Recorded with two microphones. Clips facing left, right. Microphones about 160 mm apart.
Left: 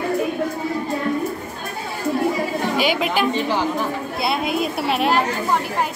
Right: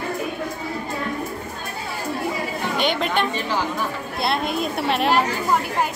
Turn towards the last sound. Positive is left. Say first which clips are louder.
# left 1 dB
turn(degrees=0)  # may be behind; listen again after turning